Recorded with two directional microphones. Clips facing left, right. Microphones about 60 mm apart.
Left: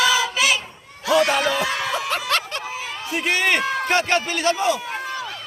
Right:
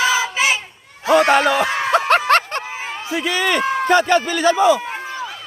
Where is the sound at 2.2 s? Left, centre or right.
Right.